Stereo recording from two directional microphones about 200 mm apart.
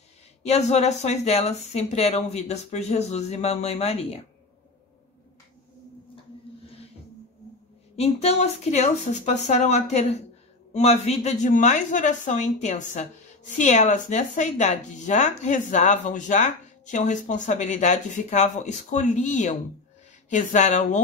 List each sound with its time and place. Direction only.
0.4 s a woman's voice: 35° left (ahead or behind)
7.9 s a woman's voice: 30° left (ahead or behind)